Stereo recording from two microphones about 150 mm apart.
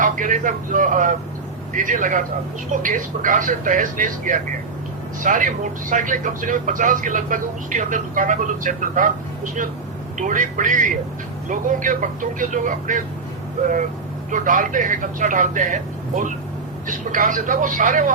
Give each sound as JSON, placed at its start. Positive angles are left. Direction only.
{"t": 0.0, "sound": "speech", "side_deg": -60}
{"t": 14.3, "sound": "speech", "side_deg": -60}